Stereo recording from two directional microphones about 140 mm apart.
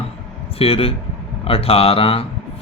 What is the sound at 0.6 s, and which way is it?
Speech, 45° left (ahead or behind).